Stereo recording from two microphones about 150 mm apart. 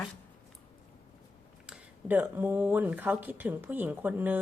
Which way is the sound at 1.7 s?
10° right (ahead or behind).